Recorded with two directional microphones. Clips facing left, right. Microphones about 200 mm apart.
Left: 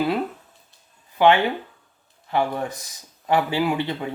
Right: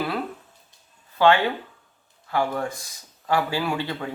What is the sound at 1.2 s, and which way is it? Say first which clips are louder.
Speech: left 1 dB; 20° left (ahead or behind).